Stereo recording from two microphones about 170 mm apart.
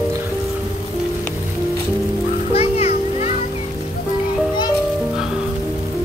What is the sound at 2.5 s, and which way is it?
Music, 40° left (ahead or behind).